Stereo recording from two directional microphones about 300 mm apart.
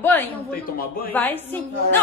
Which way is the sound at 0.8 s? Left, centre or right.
Left.